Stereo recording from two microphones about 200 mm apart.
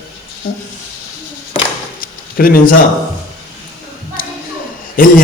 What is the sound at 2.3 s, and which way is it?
Speech, 45° left (ahead or behind).